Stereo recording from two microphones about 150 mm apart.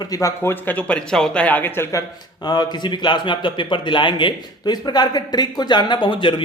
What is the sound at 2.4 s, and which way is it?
Speech, 30° left (ahead or behind).